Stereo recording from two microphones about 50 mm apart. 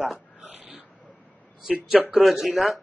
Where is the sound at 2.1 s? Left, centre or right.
Centre.